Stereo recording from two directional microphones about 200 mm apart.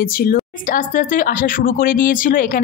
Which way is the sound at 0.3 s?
45° left (ahead or behind).